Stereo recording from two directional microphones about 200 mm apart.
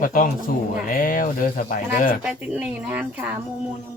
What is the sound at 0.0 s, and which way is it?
Speech, 45° left (ahead or behind).